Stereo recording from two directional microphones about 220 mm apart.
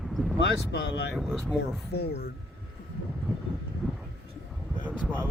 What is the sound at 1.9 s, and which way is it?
Speech, 45° left (ahead or behind).